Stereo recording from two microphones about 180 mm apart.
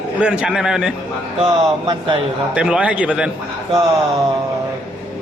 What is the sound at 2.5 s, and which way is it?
Speech, 5° right (ahead or behind).